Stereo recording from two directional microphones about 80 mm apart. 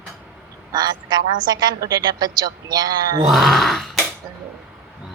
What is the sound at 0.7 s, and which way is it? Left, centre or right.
A woman's voice, right.